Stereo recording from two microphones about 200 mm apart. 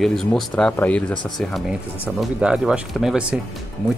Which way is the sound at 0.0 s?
Centre (ahead or behind).